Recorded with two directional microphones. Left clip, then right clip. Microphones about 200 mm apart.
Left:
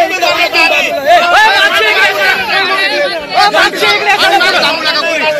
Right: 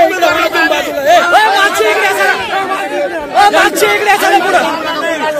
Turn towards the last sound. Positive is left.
turn(degrees=-60)  # may be behind; listen again after turning